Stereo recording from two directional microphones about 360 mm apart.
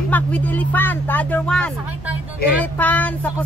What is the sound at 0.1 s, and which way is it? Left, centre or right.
Speech, centre.